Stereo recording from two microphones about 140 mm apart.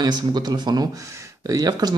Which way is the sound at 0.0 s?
30° right (ahead or behind).